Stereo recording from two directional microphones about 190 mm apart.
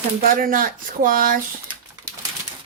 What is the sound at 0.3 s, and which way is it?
Speech, 50° right (ahead or behind).